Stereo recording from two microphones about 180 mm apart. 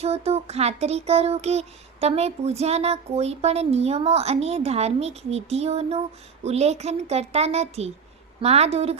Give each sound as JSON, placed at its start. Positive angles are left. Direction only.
{"t": 0.0, "sound": "child singing", "side_deg": -35}